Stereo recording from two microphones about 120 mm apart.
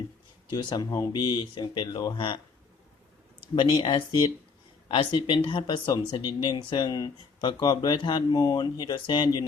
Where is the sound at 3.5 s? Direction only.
45° left (ahead or behind).